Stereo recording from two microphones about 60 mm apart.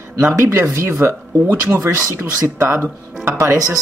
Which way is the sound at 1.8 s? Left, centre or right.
Right.